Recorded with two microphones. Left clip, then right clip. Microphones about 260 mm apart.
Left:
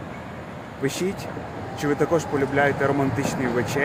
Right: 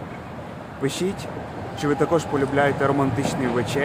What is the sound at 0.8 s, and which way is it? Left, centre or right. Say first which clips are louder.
Speech: right 1 dB; centre.